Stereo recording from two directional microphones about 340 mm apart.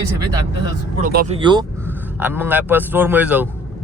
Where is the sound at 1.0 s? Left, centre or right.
Right.